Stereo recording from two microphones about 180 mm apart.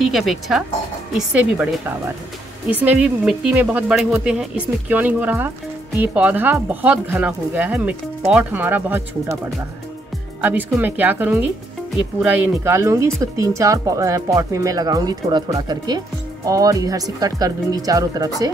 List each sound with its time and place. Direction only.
0.0 s speech: centre (ahead or behind)
10.4 s speech: 10° right (ahead or behind)